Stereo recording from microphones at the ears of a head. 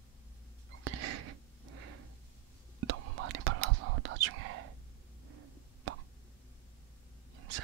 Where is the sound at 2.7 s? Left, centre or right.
Right.